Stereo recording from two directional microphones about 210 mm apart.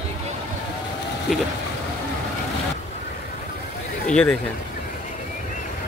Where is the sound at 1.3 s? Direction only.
Centre (ahead or behind).